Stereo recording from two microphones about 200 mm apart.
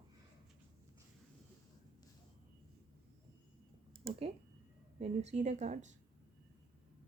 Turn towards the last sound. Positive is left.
turn(degrees=-35)  # may be behind; listen again after turning